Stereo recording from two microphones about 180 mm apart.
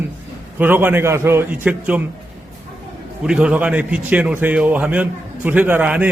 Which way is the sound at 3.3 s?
5° right (ahead or behind).